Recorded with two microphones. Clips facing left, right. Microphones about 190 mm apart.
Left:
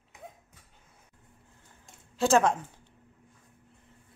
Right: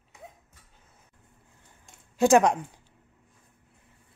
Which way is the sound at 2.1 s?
15° right (ahead or behind).